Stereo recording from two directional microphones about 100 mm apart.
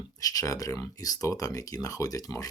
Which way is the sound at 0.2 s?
35° left (ahead or behind).